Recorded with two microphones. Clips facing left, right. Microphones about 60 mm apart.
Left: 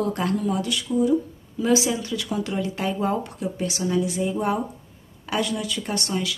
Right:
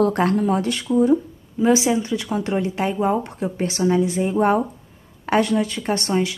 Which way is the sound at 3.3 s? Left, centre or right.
Right.